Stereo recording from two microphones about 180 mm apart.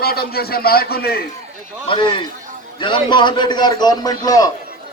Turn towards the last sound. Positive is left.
turn(degrees=20)  # may be behind; listen again after turning